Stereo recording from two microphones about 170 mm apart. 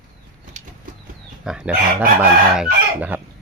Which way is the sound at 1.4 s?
5° right (ahead or behind).